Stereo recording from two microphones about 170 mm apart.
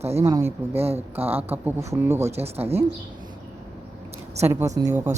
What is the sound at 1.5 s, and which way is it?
Speech, 15° right (ahead or behind).